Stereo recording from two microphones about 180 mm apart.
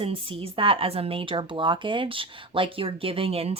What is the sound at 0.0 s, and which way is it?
Speech, 30° right (ahead or behind).